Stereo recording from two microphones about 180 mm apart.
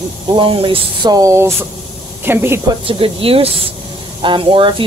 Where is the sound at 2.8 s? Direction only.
30° right (ahead or behind).